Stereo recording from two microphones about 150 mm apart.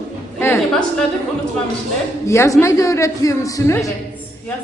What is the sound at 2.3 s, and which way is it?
A man's voice, 20° left (ahead or behind).